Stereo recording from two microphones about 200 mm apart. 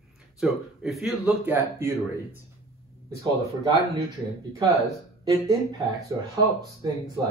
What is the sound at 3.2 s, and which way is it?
Speech, 20° right (ahead or behind).